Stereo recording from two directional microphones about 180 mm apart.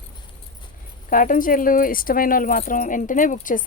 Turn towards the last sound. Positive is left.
turn(degrees=45)  # may be behind; listen again after turning